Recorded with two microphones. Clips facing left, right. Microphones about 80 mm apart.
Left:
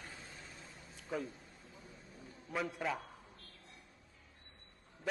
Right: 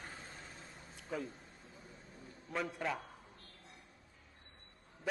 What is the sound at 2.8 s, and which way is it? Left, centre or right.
Speech, centre.